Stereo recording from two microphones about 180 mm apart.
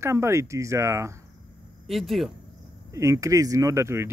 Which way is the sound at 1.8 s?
Centre (ahead or behind).